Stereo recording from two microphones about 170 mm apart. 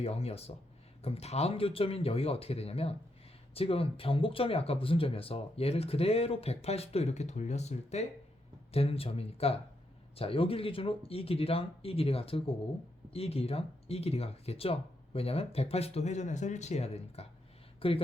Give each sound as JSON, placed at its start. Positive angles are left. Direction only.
{"t": 0.0, "sound": "speech", "side_deg": 35}